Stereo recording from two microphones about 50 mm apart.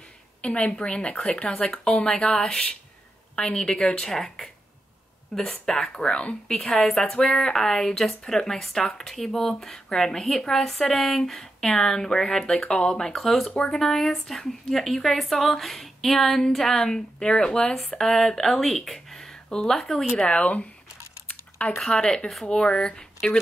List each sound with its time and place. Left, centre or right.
0.4 s a woman's voice: left
6.0 s speech: left; by 13.5 s centre
13.6 s speech: centre
20.2 s speech: left
21.3 s typing: left
21.7 s speech: centre